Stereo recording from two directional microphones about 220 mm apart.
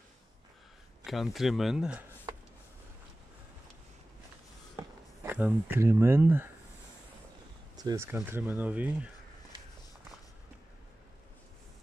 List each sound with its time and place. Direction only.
1.0 s speech: centre (ahead or behind)
2.3 s a sound: 15° right (ahead or behind)
5.2 s speech: 10° right (ahead or behind)
7.7 s speech: 15° right (ahead or behind)